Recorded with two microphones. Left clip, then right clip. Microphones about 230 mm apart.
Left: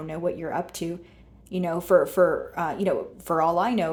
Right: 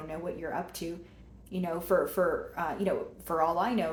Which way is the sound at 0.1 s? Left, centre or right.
Left.